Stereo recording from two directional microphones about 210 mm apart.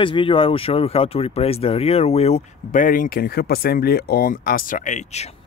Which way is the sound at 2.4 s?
40° left (ahead or behind).